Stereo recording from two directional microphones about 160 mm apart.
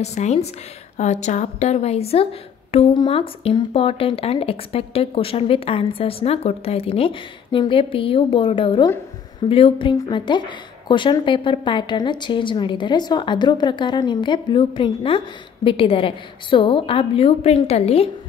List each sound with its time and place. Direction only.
0.0 s a woman's voice: 45° left (ahead or behind)